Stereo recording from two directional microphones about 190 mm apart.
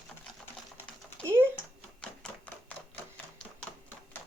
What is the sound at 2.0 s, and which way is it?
Typewriter, 5° left (ahead or behind).